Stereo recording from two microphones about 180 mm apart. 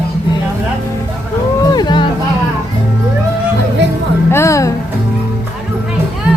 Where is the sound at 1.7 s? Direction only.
25° left (ahead or behind).